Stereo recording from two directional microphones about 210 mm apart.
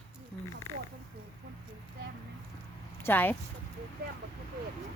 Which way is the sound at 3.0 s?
10° left (ahead or behind).